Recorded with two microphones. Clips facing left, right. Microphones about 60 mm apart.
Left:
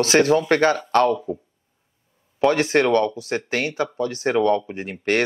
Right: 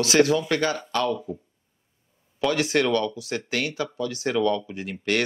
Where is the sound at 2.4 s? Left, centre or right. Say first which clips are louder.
Left 5 dB; left.